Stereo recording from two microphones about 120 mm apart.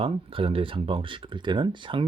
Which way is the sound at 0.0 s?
50° right (ahead or behind).